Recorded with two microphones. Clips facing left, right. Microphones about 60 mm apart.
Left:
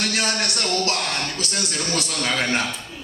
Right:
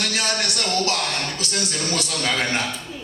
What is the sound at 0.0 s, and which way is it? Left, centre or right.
A man's voice, left.